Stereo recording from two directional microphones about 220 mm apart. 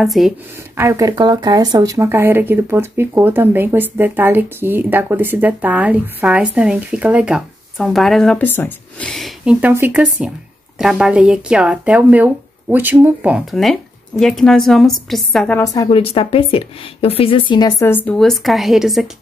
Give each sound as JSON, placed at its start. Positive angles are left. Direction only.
{"t": 0.0, "sound": "a woman's voice", "side_deg": 0}
{"t": 0.7, "sound": "a woman's voice", "side_deg": -15}